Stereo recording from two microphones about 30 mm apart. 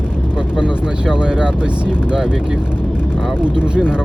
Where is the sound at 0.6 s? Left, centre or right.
Right.